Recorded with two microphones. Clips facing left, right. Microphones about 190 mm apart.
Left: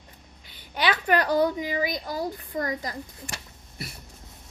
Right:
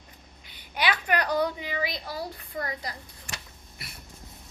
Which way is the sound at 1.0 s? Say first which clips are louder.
Left 6 dB; 35° left (ahead or behind).